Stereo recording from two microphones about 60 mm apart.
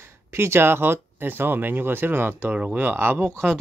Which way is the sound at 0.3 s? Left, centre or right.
Right.